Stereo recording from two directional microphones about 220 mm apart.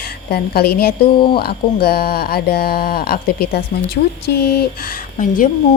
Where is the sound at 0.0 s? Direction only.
45° left (ahead or behind).